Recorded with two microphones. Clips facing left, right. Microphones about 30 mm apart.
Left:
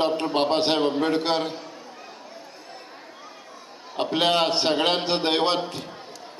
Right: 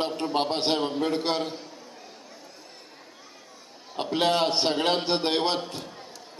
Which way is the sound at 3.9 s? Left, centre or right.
Left.